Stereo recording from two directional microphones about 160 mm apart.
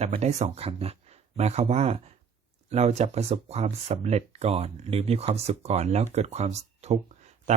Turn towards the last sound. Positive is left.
turn(degrees=-45)  # may be behind; listen again after turning